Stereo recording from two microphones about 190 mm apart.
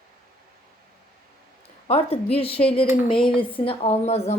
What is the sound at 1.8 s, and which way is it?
Speech, 30° left (ahead or behind).